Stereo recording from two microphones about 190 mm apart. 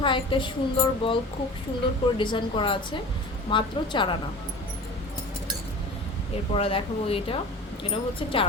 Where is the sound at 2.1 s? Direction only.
25° left (ahead or behind).